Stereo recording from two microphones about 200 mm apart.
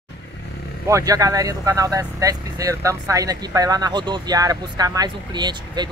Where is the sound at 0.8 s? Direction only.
15° right (ahead or behind).